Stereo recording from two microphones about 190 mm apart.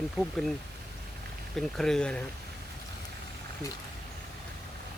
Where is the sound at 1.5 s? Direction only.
Centre (ahead or behind).